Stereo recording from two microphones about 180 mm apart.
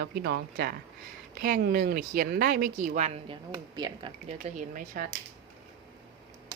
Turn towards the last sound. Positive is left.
turn(degrees=-50)  # may be behind; listen again after turning